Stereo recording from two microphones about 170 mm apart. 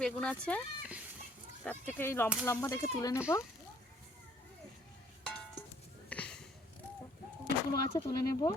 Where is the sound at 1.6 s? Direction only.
10° left (ahead or behind).